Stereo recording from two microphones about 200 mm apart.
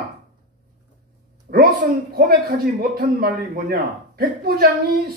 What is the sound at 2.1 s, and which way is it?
A man's voice, 50° right (ahead or behind).